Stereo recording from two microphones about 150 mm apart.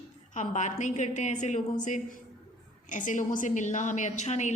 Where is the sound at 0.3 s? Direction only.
55° left (ahead or behind).